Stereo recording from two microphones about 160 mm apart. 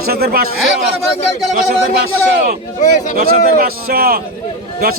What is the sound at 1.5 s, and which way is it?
A man's voice, 75° right (ahead or behind).